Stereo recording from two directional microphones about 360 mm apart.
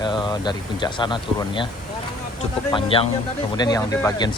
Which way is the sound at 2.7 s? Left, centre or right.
Centre.